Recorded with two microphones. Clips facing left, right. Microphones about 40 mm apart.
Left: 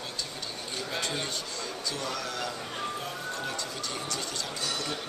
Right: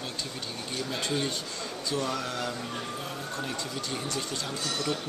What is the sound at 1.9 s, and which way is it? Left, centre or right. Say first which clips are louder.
Speech: right 6 dB; right.